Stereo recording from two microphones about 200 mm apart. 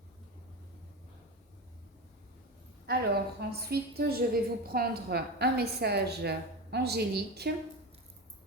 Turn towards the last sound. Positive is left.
turn(degrees=-55)  # may be behind; listen again after turning